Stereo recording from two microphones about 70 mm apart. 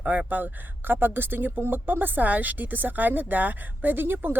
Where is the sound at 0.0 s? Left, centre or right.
Right.